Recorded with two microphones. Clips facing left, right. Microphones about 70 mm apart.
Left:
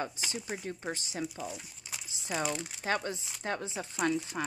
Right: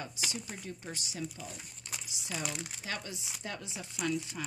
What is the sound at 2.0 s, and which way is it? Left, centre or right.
Crumpling, left.